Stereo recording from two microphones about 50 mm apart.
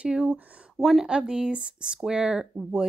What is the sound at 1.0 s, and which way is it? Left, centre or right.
Speech, centre.